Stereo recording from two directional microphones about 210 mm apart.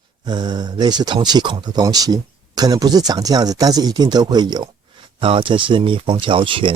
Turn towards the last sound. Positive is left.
turn(degrees=-25)  # may be behind; listen again after turning